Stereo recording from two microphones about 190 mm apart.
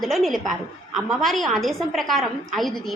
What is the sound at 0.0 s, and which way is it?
A woman's voice, centre (ahead or behind).